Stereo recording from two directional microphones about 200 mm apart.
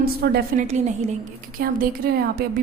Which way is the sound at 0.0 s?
50° right (ahead or behind).